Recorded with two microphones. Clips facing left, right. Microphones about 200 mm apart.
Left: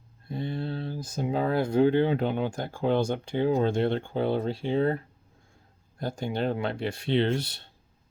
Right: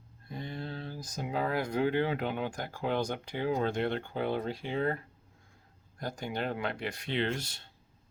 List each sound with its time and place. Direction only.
0.3 s mantra: 30° left (ahead or behind)
1.1 s speech: 30° left (ahead or behind)
6.0 s speech: 30° left (ahead or behind)